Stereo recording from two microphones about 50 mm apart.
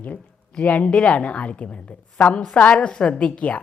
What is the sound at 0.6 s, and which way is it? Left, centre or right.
A woman's voice, left.